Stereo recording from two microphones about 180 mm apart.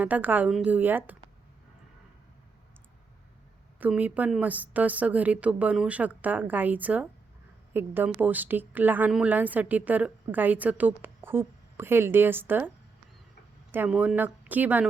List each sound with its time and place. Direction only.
0.0 s speech: 10° right (ahead or behind)
3.8 s speech: 10° right (ahead or behind)